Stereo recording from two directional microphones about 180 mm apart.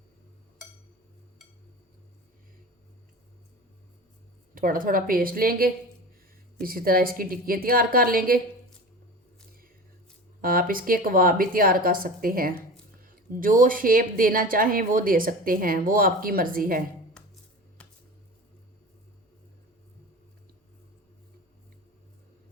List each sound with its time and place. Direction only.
4.5 s a woman's voice: 50° right (ahead or behind)
10.4 s a woman's voice: 55° right (ahead or behind)